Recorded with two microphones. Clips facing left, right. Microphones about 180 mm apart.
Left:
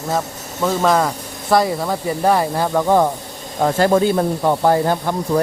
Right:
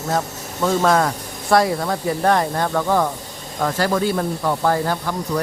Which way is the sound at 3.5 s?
30° left (ahead or behind).